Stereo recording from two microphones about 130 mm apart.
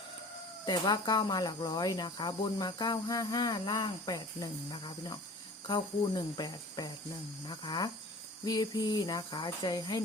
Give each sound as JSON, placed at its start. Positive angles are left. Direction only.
{"t": 0.6, "sound": "speech", "side_deg": 30}